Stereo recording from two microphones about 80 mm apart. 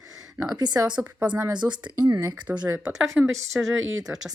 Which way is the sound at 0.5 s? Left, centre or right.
Right.